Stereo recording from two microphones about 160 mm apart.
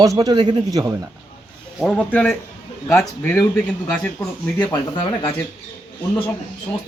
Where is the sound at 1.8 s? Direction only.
5° right (ahead or behind).